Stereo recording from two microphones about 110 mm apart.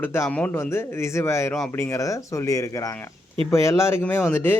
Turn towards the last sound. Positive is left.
turn(degrees=20)  # may be behind; listen again after turning